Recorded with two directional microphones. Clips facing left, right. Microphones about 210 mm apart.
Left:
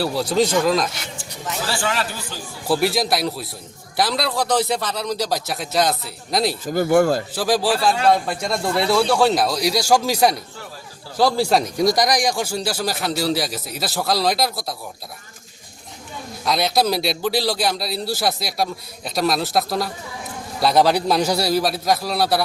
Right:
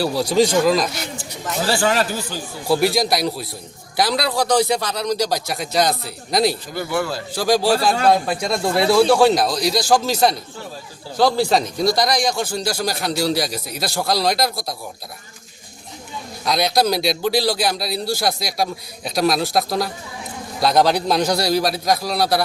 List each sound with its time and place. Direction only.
0.0 s speech: centre (ahead or behind)
1.8 s speech: 40° right (ahead or behind)
2.6 s speech: centre (ahead or behind)
6.7 s a man's voice: 45° left (ahead or behind)
7.3 s speech: 5° left (ahead or behind)
16.4 s speech: centre (ahead or behind)